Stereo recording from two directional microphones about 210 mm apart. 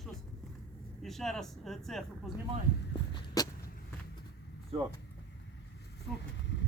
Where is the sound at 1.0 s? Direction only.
Centre (ahead or behind).